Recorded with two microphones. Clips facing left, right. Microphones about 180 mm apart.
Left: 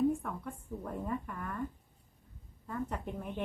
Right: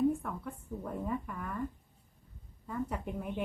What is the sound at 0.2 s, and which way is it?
A woman's voice, centre (ahead or behind).